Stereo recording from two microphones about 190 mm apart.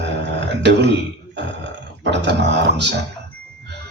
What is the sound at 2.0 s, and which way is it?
Speech, 65° right (ahead or behind).